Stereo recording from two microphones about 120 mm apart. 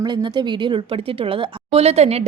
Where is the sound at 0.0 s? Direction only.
40° right (ahead or behind).